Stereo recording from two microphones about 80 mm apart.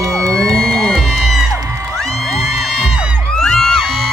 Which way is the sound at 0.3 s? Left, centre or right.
Centre.